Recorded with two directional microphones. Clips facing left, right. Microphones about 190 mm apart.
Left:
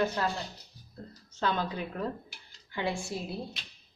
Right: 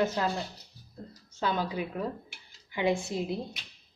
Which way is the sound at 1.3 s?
10° right (ahead or behind).